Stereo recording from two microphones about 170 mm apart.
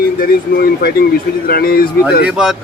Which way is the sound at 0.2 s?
60° left (ahead or behind).